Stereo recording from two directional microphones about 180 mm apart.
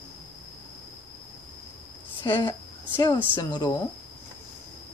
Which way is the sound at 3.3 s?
20° left (ahead or behind).